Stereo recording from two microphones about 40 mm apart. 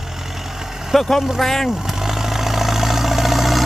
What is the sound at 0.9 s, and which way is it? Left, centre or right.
Speech, centre.